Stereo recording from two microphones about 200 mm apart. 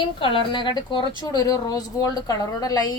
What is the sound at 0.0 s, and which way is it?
A woman's voice, 25° left (ahead or behind).